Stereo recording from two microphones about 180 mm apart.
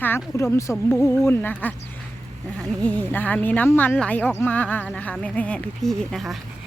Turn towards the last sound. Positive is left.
turn(degrees=0)  # may be behind; listen again after turning